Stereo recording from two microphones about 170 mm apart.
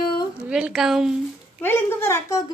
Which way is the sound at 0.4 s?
5° right (ahead or behind).